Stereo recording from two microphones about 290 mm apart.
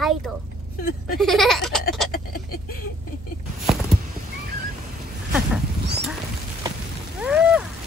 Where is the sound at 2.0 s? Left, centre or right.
Left.